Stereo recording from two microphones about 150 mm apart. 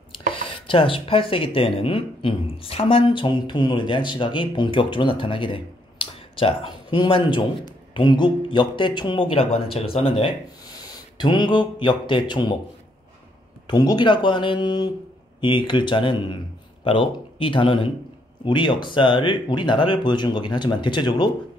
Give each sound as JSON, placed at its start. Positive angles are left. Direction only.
{"t": 0.3, "sound": "speech", "side_deg": 35}
{"t": 13.7, "sound": "speech", "side_deg": 30}